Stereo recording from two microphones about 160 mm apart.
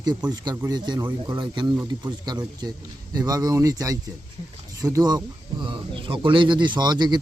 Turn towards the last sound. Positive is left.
turn(degrees=-25)  # may be behind; listen again after turning